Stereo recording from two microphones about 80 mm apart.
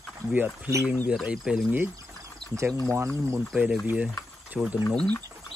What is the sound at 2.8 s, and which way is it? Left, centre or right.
Speech, right.